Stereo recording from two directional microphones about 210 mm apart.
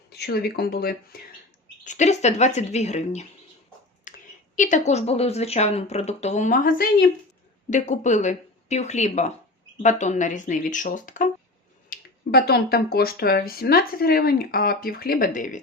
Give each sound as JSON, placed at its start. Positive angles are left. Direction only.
{"t": 0.1, "sound": "speech", "side_deg": 50}
{"t": 1.8, "sound": "speech", "side_deg": 35}
{"t": 4.1, "sound": "a sound", "side_deg": 40}
{"t": 4.5, "sound": "speech", "side_deg": 35}